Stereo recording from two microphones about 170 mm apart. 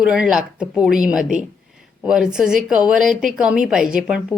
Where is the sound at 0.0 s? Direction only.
5° right (ahead or behind).